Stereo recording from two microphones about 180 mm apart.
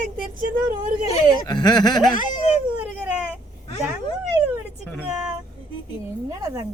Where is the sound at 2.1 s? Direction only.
45° left (ahead or behind).